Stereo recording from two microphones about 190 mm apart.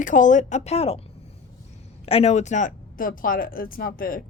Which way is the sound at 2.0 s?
35° left (ahead or behind).